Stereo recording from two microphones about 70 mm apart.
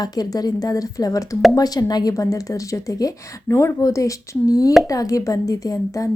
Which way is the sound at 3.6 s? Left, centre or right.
Left.